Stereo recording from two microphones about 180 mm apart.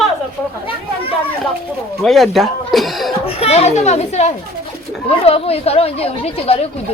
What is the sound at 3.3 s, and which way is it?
Speech, 35° left (ahead or behind).